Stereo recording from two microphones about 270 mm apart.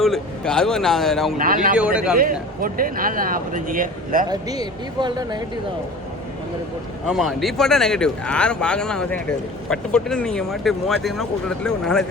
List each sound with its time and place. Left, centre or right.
0.0 s speech: centre
1.4 s speech: right
1.7 s speech: centre
2.1 s speech: right
4.3 s speech: centre
7.1 s speech: centre